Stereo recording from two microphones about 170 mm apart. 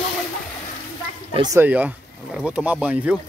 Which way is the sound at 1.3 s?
25° right (ahead or behind).